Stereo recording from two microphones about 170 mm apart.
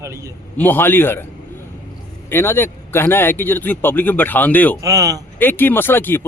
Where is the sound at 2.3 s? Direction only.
15° left (ahead or behind).